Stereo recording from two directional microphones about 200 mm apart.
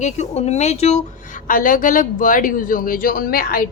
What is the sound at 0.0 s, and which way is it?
A man's voice, 35° left (ahead or behind).